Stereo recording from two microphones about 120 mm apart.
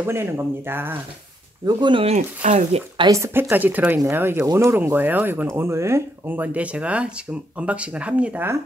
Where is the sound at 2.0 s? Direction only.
85° right.